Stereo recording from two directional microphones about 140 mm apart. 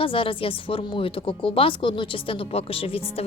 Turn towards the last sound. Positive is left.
turn(degrees=45)  # may be behind; listen again after turning